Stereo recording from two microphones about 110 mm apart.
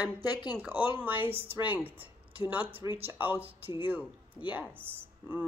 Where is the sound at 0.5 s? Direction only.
20° right (ahead or behind).